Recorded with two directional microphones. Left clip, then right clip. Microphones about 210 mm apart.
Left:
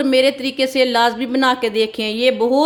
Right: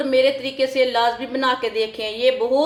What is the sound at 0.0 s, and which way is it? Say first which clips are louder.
A woman's voice: left 2 dB; 45° left (ahead or behind).